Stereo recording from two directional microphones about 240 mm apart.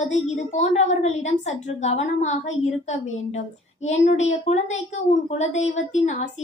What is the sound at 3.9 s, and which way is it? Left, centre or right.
A woman's voice, left.